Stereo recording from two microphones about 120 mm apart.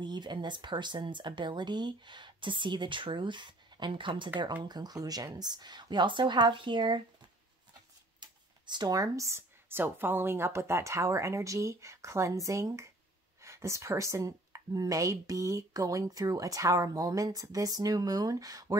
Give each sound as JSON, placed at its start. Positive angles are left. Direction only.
{"t": 0.0, "sound": "speech", "side_deg": -40}